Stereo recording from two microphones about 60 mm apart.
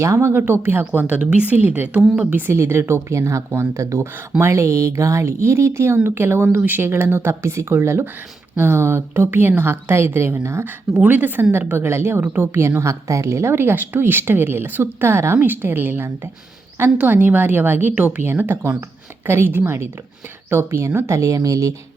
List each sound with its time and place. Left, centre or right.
0.0 s a woman's voice: right
1.0 s a woman's voice: right
2.5 s a woman's voice: right
11.0 s a woman's voice: right
11.9 s a woman's voice: right
15.4 s a woman's voice: right
17.0 s a woman's voice: right